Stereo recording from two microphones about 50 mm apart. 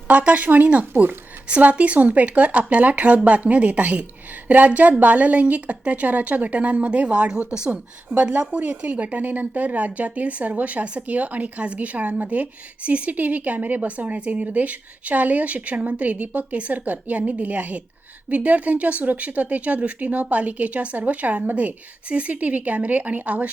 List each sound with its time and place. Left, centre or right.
0.1 s speech: right
7.3 s speech: centre
7.7 s speech: right